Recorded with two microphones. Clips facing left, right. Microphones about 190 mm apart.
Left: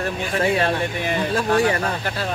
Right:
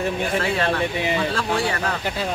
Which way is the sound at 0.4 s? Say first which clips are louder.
Left 5 dB; 15° left (ahead or behind).